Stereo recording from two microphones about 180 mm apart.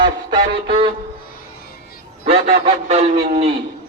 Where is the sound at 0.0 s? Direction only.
30° right (ahead or behind).